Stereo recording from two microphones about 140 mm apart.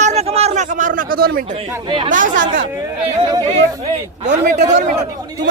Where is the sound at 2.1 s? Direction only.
70° right (ahead or behind).